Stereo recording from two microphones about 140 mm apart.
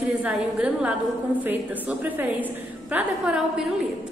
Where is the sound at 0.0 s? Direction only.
5° right (ahead or behind).